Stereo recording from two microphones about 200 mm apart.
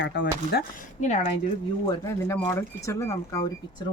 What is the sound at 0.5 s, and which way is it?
Speech, 55° left (ahead or behind).